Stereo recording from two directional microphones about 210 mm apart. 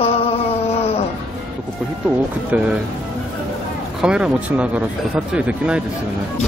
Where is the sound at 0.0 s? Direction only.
25° left (ahead or behind).